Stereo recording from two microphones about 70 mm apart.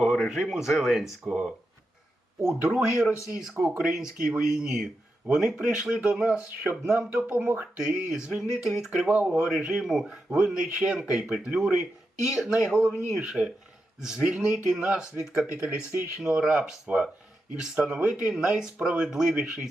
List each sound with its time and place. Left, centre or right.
0.3 s speech: centre
3.1 s speech: left
3.6 s speech: centre; by 7.7 s right
7.8 s speech: centre